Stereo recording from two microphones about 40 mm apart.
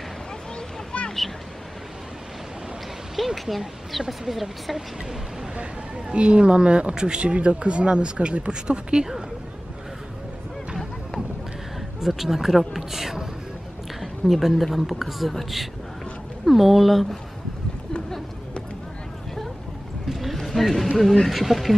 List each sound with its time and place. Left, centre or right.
0.9 s a sound: left
3.3 s speech: centre
6.1 s speech: right
12.0 s speech: centre
20.1 s a sound: centre
21.0 s speech: centre